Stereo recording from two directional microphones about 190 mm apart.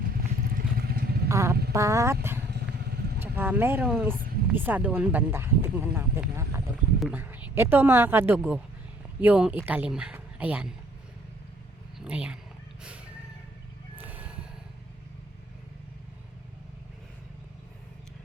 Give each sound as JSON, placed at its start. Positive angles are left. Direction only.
{"t": 0.0, "sound": "vehicle", "side_deg": -50}
{"t": 1.3, "sound": "a sound", "side_deg": -15}
{"t": 1.7, "sound": "speech", "side_deg": -15}
{"t": 3.2, "sound": "speech", "side_deg": -10}
{"t": 11.9, "sound": "speech", "side_deg": -5}
{"t": 14.0, "sound": "a sound", "side_deg": -10}